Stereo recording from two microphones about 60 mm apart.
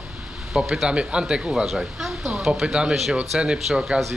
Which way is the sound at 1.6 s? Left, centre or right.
Centre.